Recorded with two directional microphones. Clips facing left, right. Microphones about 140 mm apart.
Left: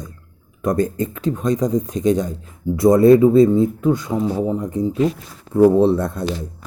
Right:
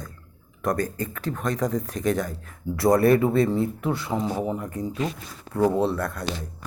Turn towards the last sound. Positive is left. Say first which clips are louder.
# left 8 dB
turn(degrees=20)  # may be behind; listen again after turning